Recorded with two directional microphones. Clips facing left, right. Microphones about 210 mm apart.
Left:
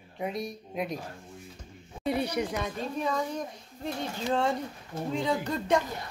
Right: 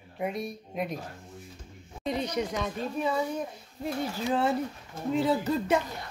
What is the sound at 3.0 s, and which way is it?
Speech, 10° right (ahead or behind).